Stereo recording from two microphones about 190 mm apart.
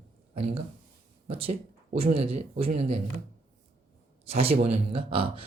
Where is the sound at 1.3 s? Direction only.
30° right (ahead or behind).